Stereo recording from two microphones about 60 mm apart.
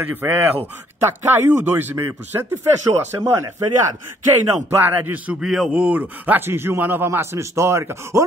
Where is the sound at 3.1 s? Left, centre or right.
Right.